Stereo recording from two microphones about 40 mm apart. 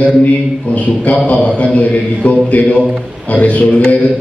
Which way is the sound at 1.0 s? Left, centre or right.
Left.